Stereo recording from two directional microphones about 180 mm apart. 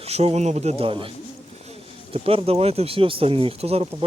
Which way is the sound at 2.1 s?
30° right (ahead or behind).